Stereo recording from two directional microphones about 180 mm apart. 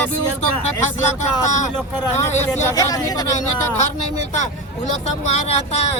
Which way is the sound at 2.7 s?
20° left (ahead or behind).